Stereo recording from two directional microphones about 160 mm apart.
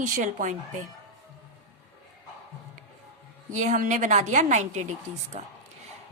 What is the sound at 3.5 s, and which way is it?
A woman's voice, 50° right (ahead or behind).